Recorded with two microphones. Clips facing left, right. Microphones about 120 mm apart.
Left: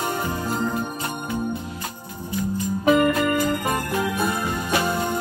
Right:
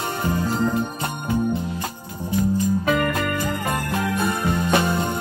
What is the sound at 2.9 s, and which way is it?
Music, 20° left (ahead or behind).